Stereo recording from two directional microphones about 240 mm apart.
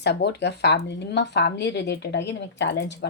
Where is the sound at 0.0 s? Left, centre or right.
Left.